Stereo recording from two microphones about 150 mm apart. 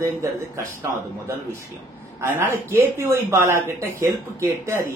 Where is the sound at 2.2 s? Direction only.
15° right (ahead or behind).